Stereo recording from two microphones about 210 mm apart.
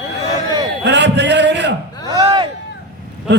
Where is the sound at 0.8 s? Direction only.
55° right (ahead or behind).